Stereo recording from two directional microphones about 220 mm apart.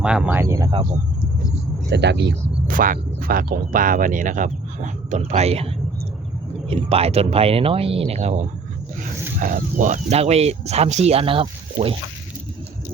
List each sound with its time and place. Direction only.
0.0 s speech: 5° right (ahead or behind)
1.9 s speech: 50° right (ahead or behind); by 5.6 s 30° right (ahead or behind)
6.7 s speech: 25° right (ahead or behind)